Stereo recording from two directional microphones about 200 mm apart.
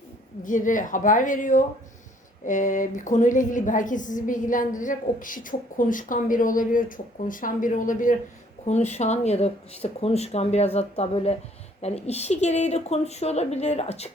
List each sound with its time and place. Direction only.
0.4 s a woman's voice: 40° left (ahead or behind)